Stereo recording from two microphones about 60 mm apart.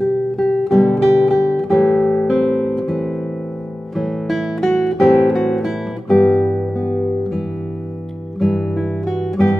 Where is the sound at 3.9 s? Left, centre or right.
Centre.